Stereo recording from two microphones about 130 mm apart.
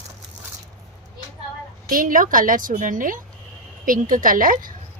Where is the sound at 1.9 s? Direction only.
90° right.